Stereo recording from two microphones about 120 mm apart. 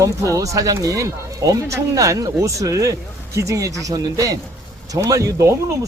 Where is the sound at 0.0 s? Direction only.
30° right (ahead or behind).